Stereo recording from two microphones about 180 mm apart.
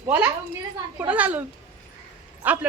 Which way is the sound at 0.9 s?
10° right (ahead or behind).